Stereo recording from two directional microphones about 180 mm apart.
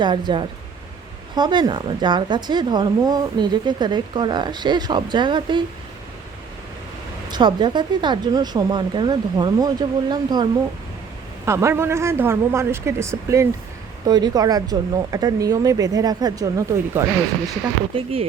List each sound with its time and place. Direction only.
0.0 s a woman's voice: 25° right (ahead or behind)
7.3 s a woman's voice: 25° right (ahead or behind)
11.4 s a woman's voice: 15° right (ahead or behind)
17.9 s speech: 30° right (ahead or behind)